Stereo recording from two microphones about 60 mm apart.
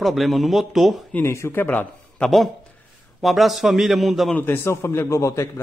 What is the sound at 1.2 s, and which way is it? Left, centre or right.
Speech, left.